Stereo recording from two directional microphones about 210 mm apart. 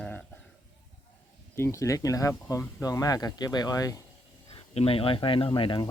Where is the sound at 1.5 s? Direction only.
15° left (ahead or behind).